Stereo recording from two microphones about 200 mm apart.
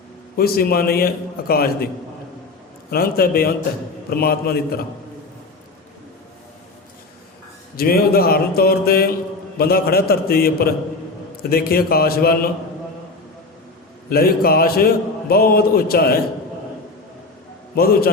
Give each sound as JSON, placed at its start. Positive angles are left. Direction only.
{"t": 0.3, "sound": "a man's voice", "side_deg": 50}
{"t": 2.9, "sound": "a man's voice", "side_deg": 50}
{"t": 7.8, "sound": "a man's voice", "side_deg": 50}
{"t": 14.1, "sound": "a man's voice", "side_deg": 50}